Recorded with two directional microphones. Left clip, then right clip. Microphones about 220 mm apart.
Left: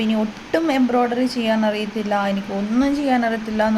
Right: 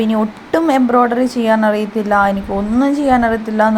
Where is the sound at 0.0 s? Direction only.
15° right (ahead or behind).